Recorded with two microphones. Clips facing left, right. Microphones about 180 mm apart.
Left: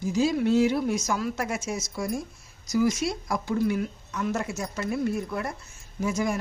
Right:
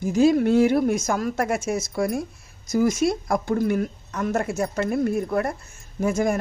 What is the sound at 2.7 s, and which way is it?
Speech, 50° right (ahead or behind).